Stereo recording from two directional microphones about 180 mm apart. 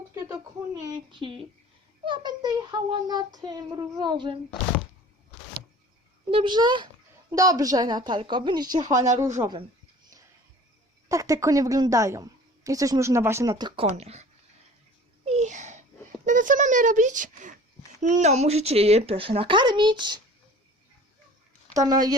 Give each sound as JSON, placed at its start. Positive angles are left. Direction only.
{"t": 0.1, "sound": "speech", "side_deg": -20}
{"t": 6.3, "sound": "speech", "side_deg": -25}
{"t": 11.1, "sound": "a woman's voice", "side_deg": -15}
{"t": 13.9, "sound": "speech", "side_deg": -35}
{"t": 15.2, "sound": "a sound", "side_deg": -40}
{"t": 16.2, "sound": "speech", "side_deg": -45}
{"t": 21.7, "sound": "speech", "side_deg": -20}